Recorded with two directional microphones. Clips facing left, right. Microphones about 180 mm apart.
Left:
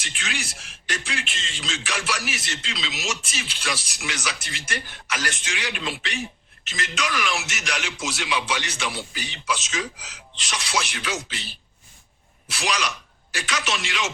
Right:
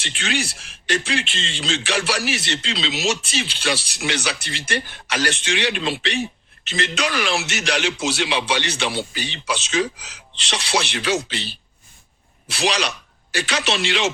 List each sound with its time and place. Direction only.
0.0 s speech: 30° right (ahead or behind)